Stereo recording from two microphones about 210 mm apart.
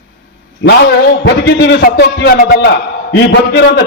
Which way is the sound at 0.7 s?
55° left (ahead or behind).